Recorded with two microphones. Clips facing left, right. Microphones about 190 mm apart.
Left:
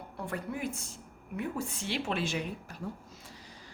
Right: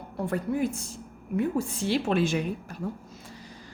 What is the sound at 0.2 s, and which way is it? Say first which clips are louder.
A woman's voice: right 9 dB; 40° right (ahead or behind).